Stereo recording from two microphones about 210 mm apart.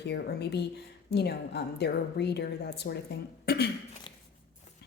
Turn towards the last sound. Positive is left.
turn(degrees=50)  # may be behind; listen again after turning